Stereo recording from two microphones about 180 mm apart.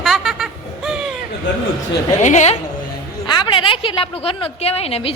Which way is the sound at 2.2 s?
40° left (ahead or behind).